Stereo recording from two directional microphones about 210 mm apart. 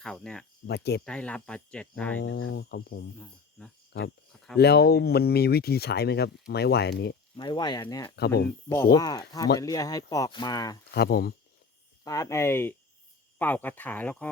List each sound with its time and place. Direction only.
0.0 s speech: 5° left (ahead or behind)
0.7 s speech: 50° left (ahead or behind)
1.0 s speech: 5° left (ahead or behind)
2.2 s cricket: 65° left (ahead or behind)
2.6 s speech: 50° left (ahead or behind)
4.5 s speech: 50° left (ahead or behind)
7.3 s speech: 20° left (ahead or behind)
10.9 s speech: 45° left (ahead or behind)
12.0 s speech: 15° left (ahead or behind)